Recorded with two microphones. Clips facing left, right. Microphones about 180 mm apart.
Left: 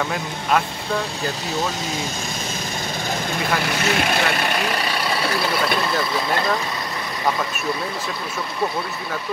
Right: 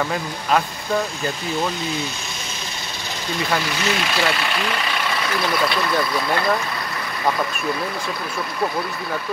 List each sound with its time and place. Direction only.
0.1 s speech: centre (ahead or behind)
3.8 s speech: 55° left (ahead or behind); by 5.4 s 35° left (ahead or behind)